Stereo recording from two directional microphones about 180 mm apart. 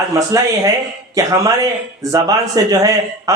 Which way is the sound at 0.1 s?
15° right (ahead or behind).